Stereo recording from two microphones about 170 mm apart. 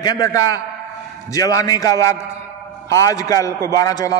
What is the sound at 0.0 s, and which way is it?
A man's voice, 25° left (ahead or behind).